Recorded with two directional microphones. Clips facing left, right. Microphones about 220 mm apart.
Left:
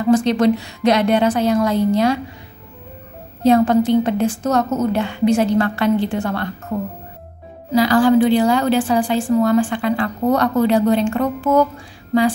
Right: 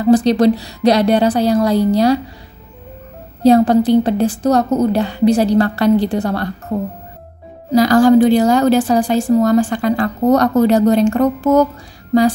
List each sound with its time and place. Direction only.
0.0 s a woman's voice: 35° right (ahead or behind)
3.4 s a woman's voice: 35° right (ahead or behind)
7.7 s a woman's voice: 45° right (ahead or behind)